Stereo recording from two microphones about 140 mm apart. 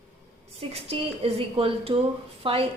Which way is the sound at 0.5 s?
45° right (ahead or behind).